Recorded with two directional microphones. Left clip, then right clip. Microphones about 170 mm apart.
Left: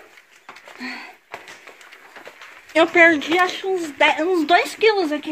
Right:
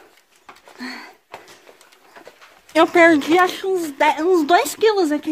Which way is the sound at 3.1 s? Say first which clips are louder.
Right 3 dB; 45° right (ahead or behind).